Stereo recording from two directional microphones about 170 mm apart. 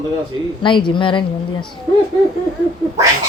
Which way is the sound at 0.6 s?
30° left (ahead or behind).